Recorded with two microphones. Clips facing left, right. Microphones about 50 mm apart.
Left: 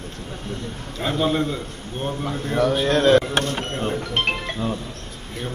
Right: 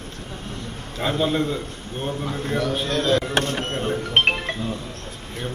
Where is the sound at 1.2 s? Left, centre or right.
Left.